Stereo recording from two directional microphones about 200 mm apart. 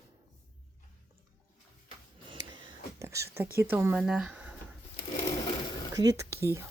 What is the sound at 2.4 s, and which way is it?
Whispering, 20° right (ahead or behind).